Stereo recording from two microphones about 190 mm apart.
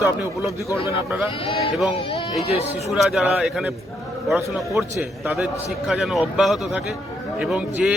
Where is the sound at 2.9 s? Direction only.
Centre (ahead or behind).